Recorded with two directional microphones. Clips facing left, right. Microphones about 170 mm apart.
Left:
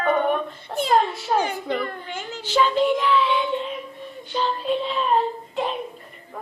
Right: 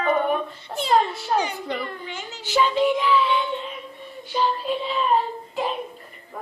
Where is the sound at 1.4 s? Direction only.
50° left (ahead or behind).